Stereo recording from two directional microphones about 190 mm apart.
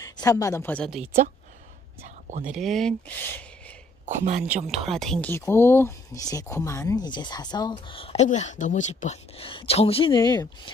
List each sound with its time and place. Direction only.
0.0 s a woman's voice: 20° left (ahead or behind)
0.8 s speech: 5° right (ahead or behind)
2.0 s speech: 40° right (ahead or behind)
2.5 s speech: centre (ahead or behind)
4.0 s speech: 40° right (ahead or behind)
4.6 s speech: centre (ahead or behind); by 10.7 s 20° left (ahead or behind)